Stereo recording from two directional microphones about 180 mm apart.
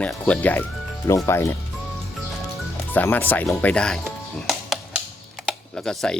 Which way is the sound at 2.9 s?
10° left (ahead or behind).